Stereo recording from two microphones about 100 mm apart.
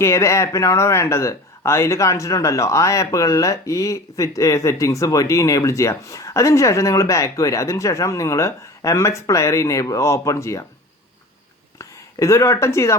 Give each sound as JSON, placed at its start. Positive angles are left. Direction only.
{"t": 0.0, "sound": "speech", "side_deg": 30}
{"t": 11.8, "sound": "speech", "side_deg": 30}